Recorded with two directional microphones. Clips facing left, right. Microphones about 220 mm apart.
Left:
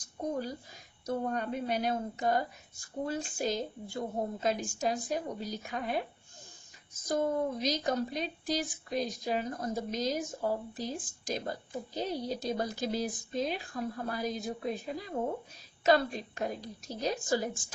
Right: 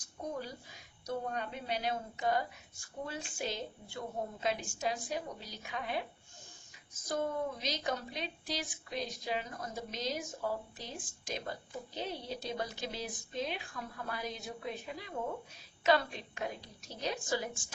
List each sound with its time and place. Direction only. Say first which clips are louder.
1.0 s a woman's voice: left 5 dB; 45° left (ahead or behind)
7.1 s a woman's voice: left 5 dB; 45° left (ahead or behind)